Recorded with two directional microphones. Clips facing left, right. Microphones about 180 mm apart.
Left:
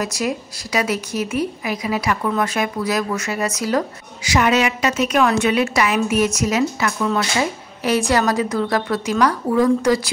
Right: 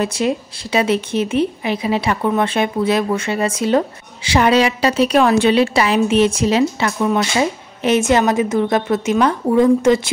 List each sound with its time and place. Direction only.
0.0 s speech: 25° right (ahead or behind)